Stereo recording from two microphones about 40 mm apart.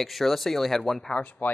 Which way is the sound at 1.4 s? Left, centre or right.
Left.